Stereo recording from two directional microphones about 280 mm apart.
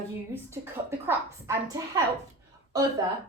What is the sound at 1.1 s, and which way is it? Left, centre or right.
A woman's voice, centre.